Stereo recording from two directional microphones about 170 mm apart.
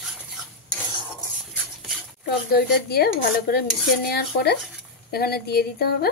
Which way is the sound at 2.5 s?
65° left (ahead or behind).